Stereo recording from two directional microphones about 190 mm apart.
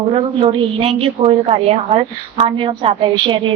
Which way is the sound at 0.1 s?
30° right (ahead or behind).